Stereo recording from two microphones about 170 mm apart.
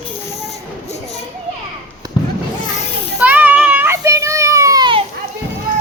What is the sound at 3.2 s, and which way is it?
Child singing, 10° right (ahead or behind).